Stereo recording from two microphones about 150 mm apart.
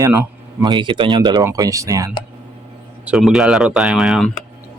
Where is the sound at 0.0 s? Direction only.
15° right (ahead or behind).